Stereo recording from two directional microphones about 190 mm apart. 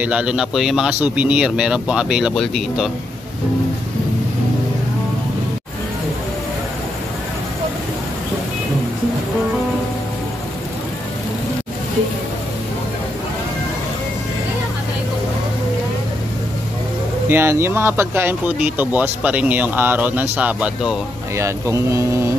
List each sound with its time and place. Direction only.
0.0 s speech: 5° right (ahead or behind)
17.3 s speech: 15° right (ahead or behind)
21.4 s speech: 15° right (ahead or behind)